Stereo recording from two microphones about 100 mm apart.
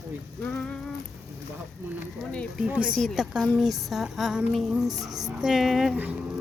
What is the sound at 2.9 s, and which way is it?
A woman's voice, centre (ahead or behind).